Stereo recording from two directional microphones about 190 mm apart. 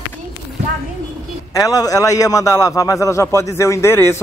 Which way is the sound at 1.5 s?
20° left (ahead or behind).